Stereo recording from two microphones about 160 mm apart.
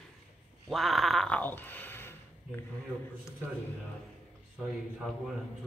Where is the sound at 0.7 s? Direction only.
Centre (ahead or behind).